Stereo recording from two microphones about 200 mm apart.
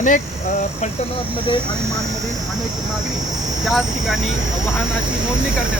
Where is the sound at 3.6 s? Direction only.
Centre (ahead or behind).